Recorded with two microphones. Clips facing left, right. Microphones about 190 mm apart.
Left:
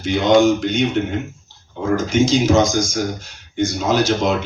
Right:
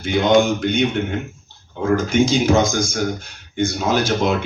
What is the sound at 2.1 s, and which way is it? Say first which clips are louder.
Speech: left 2 dB; 55° right (ahead or behind).